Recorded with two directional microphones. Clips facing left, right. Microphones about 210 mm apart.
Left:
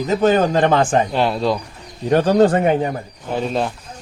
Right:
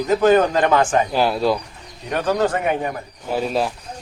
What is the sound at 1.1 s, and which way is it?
Speech, 5° right (ahead or behind).